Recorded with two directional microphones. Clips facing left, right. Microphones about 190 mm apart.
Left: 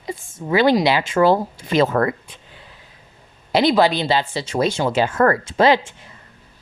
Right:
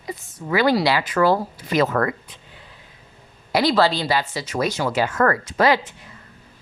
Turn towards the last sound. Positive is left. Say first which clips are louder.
# left 3 dB
turn(degrees=25)  # may be behind; listen again after turning